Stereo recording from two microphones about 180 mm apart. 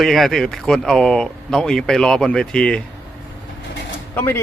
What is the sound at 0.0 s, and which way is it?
Speech, centre (ahead or behind).